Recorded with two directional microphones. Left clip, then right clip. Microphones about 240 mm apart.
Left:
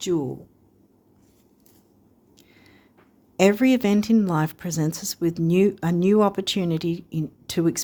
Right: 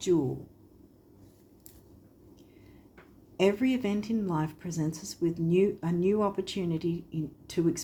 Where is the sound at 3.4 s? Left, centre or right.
Left.